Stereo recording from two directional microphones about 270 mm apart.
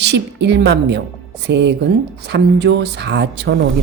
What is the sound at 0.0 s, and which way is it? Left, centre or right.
A woman's voice, right.